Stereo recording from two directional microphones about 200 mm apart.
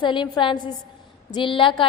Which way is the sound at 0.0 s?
20° left (ahead or behind).